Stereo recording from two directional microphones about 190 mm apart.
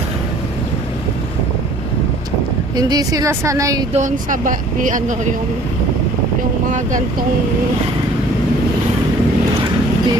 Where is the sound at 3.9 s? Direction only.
40° right (ahead or behind).